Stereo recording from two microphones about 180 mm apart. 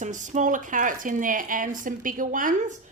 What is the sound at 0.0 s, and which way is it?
A woman's voice, 45° right (ahead or behind).